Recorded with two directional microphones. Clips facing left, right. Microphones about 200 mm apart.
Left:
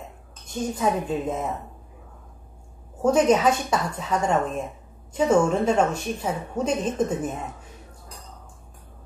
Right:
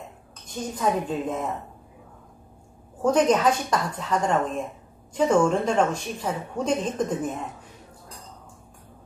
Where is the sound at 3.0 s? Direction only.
10° left (ahead or behind).